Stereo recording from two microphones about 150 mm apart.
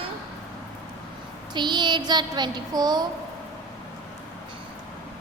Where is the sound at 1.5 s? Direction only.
30° right (ahead or behind).